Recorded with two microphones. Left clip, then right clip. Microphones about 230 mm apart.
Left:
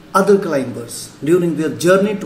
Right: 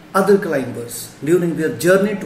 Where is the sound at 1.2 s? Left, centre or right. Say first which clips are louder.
Left 1 dB; centre.